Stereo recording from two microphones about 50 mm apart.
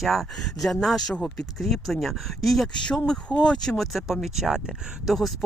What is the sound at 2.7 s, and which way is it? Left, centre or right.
Speech, centre.